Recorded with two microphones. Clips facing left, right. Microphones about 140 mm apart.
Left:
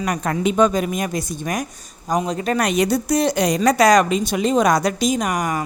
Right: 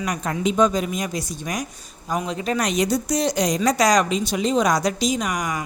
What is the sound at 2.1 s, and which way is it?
A woman's voice, 40° left (ahead or behind).